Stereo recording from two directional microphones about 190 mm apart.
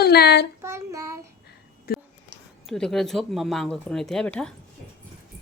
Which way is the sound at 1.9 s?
55° left (ahead or behind).